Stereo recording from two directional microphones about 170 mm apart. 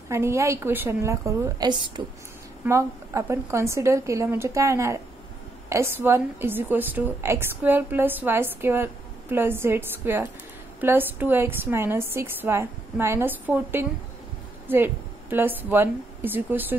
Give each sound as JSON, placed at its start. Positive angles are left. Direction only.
{"t": 0.1, "sound": "a woman's voice", "side_deg": -15}
{"t": 2.6, "sound": "a woman's voice", "side_deg": -15}